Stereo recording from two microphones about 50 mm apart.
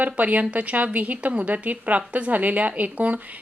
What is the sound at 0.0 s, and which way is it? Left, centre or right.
A woman's voice, right.